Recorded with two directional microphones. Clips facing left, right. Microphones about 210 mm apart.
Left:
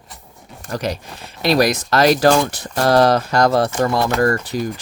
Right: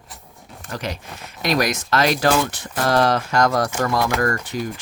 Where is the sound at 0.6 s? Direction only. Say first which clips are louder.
Left 5 dB; 40° left (ahead or behind).